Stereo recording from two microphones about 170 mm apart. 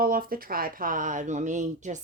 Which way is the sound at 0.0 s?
60° right (ahead or behind).